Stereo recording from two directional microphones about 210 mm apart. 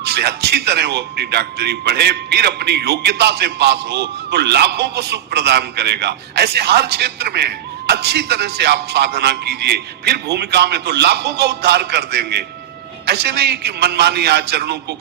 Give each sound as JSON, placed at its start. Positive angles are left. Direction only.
{"t": 0.0, "sound": "a man's voice", "side_deg": -50}